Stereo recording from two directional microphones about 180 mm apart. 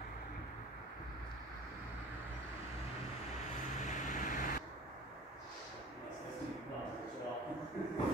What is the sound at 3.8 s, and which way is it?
Vehicle, 45° left (ahead or behind).